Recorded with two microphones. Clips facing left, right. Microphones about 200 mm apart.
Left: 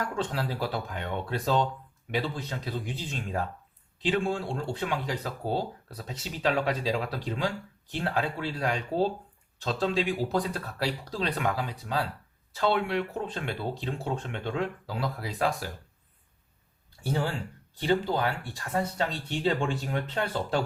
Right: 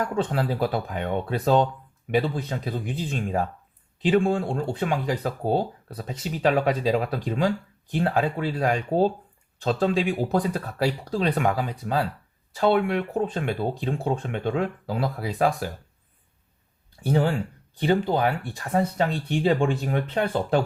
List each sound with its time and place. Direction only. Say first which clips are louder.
0.2 s speech: right 8 dB; 55° right (ahead or behind)
17.7 s speech: right 4 dB; 55° right (ahead or behind)